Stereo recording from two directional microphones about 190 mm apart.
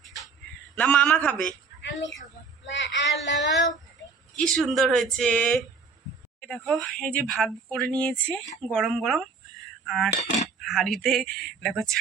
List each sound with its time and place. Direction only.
0.8 s a man's voice: 5° left (ahead or behind)
1.8 s speech: 70° left (ahead or behind)
4.4 s a man's voice: 5° left (ahead or behind)